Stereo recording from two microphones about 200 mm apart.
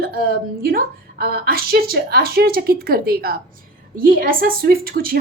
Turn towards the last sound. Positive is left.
turn(degrees=-45)  # may be behind; listen again after turning